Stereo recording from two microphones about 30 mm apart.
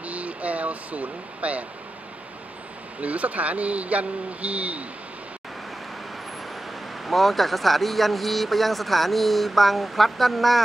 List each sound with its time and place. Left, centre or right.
0.0 s vehicle: right
3.0 s speech: right
7.1 s speech: centre